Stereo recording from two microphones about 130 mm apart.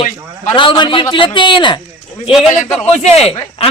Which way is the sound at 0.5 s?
35° left (ahead or behind).